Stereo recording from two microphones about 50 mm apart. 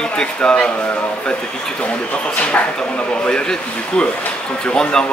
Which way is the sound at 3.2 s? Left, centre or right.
Centre.